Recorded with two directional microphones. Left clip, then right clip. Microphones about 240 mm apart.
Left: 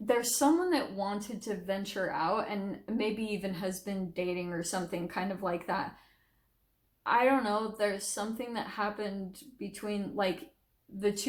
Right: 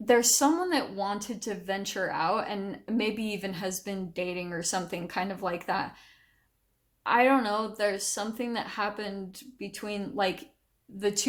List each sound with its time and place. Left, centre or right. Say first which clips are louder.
0.0 s a woman's voice: right 5 dB; right
7.0 s a woman's voice: right 3 dB; right